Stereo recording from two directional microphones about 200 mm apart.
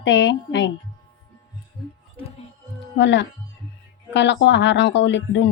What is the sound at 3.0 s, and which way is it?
Speech, 60° left (ahead or behind).